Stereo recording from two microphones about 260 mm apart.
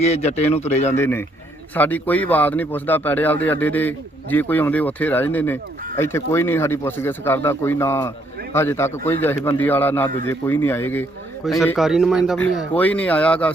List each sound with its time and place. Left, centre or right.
0.0 s speech: left
0.9 s a man's voice: centre